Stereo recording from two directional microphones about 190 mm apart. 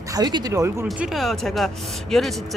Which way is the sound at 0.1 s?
20° right (ahead or behind).